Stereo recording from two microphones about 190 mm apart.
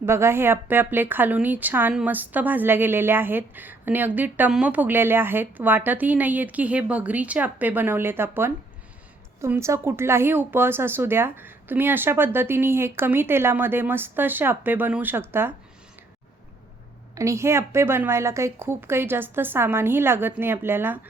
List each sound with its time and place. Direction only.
0.0 s a woman's voice: 15° right (ahead or behind)
17.2 s a woman's voice: 15° right (ahead or behind)